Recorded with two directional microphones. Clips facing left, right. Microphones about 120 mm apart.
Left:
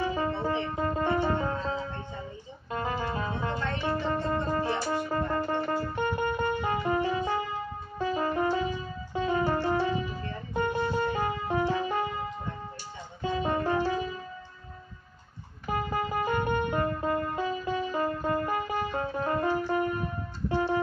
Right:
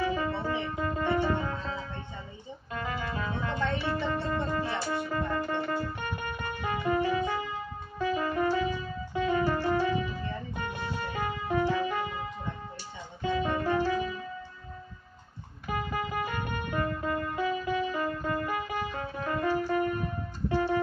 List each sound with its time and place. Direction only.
0.0 s music: 30° left (ahead or behind)
13.2 s music: 30° left (ahead or behind)
15.7 s music: 30° left (ahead or behind)